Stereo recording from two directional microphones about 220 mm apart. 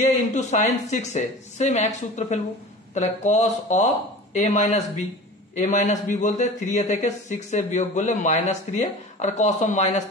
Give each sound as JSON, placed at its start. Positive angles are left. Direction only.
{"t": 0.0, "sound": "a man's voice", "side_deg": 30}